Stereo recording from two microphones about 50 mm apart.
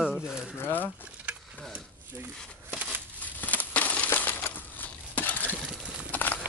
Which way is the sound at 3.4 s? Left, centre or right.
Left.